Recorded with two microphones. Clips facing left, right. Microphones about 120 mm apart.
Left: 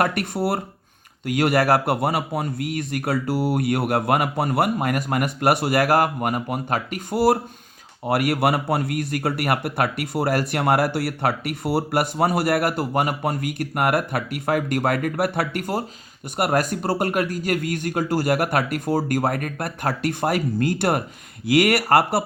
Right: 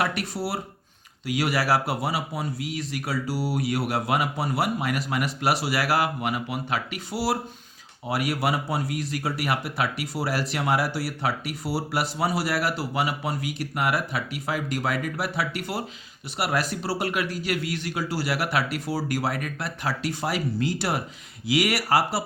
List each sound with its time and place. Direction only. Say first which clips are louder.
0.0 s speech: left 5 dB; 55° left (ahead or behind)